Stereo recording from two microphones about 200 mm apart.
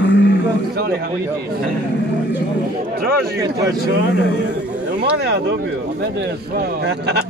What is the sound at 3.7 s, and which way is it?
Speech, 55° right (ahead or behind).